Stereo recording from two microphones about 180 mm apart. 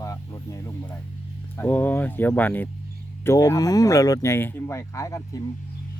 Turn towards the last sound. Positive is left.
turn(degrees=20)  # may be behind; listen again after turning